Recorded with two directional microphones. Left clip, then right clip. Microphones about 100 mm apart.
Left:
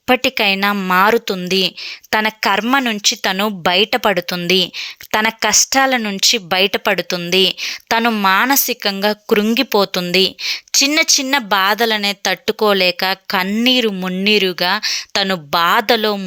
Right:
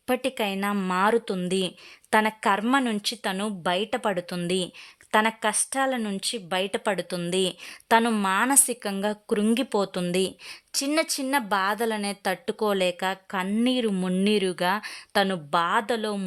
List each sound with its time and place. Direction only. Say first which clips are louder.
0.1 s a woman's voice: left 12 dB; 25° left (ahead or behind)
8.4 s speech: left 10 dB; 15° left (ahead or behind)
10.7 s speech: left 12 dB; 30° left (ahead or behind)
13.3 s a woman's voice: left 11 dB; 30° left (ahead or behind)
13.6 s speech: left 10 dB; 20° left (ahead or behind)
15.2 s a woman's voice: left 7 dB; 25° left (ahead or behind)